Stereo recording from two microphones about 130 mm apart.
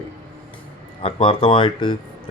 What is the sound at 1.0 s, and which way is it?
Speech, 45° left (ahead or behind).